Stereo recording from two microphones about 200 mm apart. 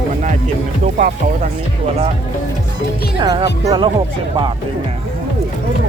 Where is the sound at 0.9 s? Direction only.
40° right (ahead or behind).